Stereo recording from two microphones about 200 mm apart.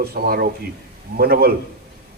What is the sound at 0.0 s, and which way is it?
A man's voice, 50° right (ahead or behind).